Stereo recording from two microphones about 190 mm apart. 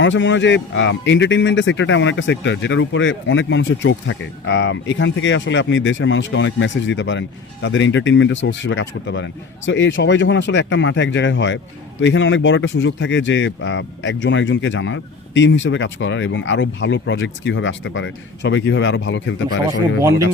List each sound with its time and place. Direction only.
0.0 s speech: 75° left (ahead or behind)
20.0 s speech: 15° right (ahead or behind)